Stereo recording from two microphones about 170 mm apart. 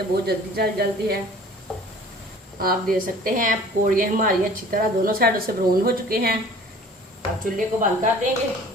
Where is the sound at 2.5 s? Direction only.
60° right (ahead or behind).